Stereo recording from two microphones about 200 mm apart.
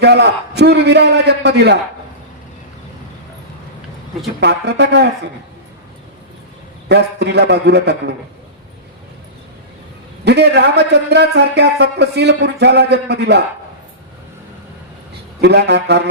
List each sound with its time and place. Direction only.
0.0 s a man's voice: 55° right (ahead or behind)
4.4 s a man's voice: 60° right (ahead or behind)
6.8 s a man's voice: 55° right (ahead or behind)
10.2 s a man's voice: 55° right (ahead or behind)
15.4 s a man's voice: 55° right (ahead or behind)